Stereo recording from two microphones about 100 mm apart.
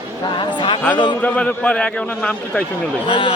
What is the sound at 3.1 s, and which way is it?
Speech, 65° left (ahead or behind).